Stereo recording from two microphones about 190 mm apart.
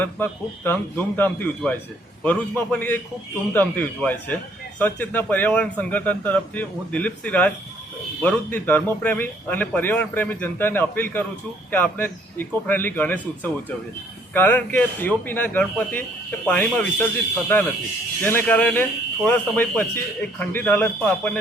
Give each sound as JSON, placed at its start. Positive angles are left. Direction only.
{"t": 0.0, "sound": "speech", "side_deg": 10}
{"t": 18.2, "sound": "speech", "side_deg": 10}